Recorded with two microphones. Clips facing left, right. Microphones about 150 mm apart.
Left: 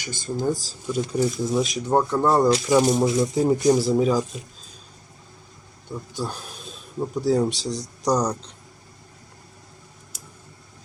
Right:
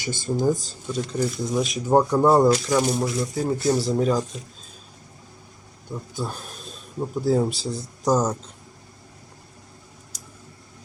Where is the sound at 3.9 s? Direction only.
Centre (ahead or behind).